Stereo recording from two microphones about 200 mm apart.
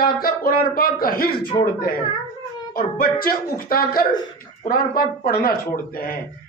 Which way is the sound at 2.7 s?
45° left (ahead or behind).